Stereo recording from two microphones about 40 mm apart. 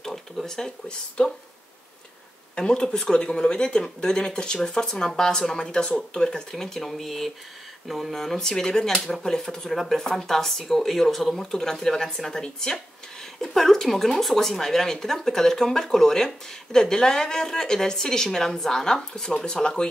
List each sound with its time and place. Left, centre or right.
0.0 s a sound: centre
0.8 s speech: left
2.5 s speech: left